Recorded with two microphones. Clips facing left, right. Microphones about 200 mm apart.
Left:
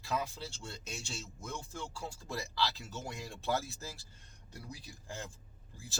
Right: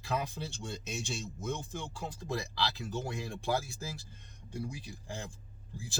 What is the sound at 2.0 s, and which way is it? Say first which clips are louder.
Speech: right 6 dB; 15° right (ahead or behind).